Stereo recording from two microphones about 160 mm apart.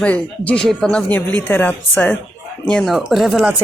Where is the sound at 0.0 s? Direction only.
10° left (ahead or behind).